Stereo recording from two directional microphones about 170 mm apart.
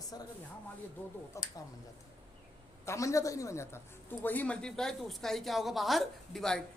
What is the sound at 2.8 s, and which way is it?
A woman's voice, 20° left (ahead or behind).